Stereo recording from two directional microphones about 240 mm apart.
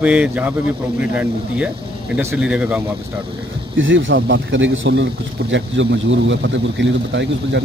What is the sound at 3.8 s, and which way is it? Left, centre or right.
Speech, right.